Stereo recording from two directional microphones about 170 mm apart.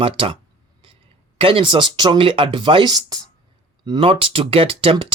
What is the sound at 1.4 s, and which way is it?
Speech, 30° right (ahead or behind).